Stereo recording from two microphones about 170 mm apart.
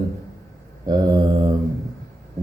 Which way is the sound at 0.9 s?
25° right (ahead or behind).